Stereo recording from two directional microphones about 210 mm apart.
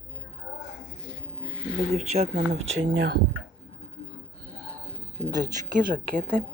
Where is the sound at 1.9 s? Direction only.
30° right (ahead or behind).